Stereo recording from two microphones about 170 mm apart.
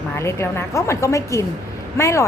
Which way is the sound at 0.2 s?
15° left (ahead or behind).